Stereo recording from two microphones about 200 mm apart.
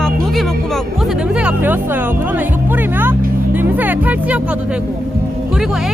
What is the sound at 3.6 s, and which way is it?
Music, 10° right (ahead or behind).